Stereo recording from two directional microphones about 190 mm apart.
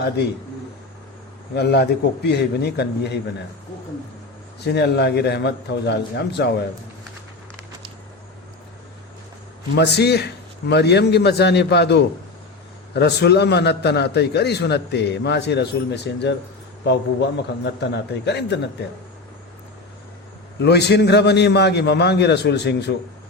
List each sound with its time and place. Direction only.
1.5 s a man's voice: 60° left (ahead or behind)
4.6 s a man's voice: 60° left (ahead or behind)
9.7 s a man's voice: 60° left (ahead or behind)
20.6 s a man's voice: 60° left (ahead or behind)